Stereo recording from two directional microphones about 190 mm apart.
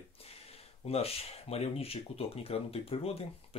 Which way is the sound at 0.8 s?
30° left (ahead or behind).